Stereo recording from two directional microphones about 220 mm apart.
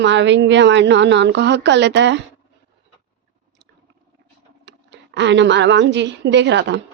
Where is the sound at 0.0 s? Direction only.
55° right (ahead or behind).